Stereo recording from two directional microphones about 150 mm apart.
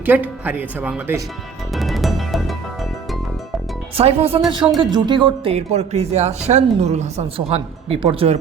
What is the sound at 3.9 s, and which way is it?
Speech, 40° right (ahead or behind).